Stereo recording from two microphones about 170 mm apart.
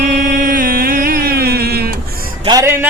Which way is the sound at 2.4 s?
20° right (ahead or behind).